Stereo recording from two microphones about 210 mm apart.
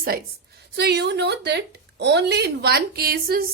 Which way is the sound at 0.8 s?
50° right (ahead or behind).